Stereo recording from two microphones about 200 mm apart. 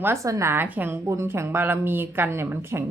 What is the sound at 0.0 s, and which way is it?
A woman's voice, 15° right (ahead or behind).